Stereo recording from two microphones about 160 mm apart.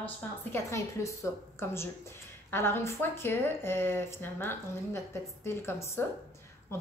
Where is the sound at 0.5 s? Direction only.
20° left (ahead or behind).